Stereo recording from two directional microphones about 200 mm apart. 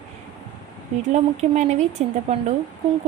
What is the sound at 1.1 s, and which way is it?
A woman's voice, 35° right (ahead or behind).